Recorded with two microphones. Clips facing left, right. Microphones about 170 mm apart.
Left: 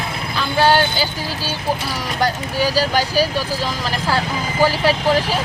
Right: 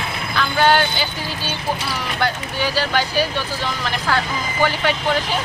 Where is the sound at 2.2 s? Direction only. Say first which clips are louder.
Left 4 dB; 40° left (ahead or behind).